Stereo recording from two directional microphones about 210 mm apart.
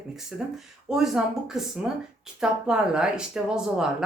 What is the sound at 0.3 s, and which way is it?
Speech, centre (ahead or behind).